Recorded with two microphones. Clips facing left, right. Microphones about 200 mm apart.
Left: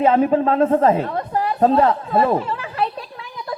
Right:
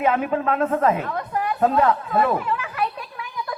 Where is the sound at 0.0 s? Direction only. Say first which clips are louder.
Left 6 dB; 30° left (ahead or behind).